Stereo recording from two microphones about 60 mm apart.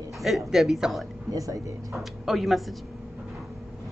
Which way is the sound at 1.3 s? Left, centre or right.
Right.